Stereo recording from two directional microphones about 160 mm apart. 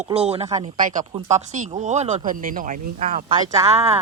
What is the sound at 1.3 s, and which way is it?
Speech, 45° right (ahead or behind).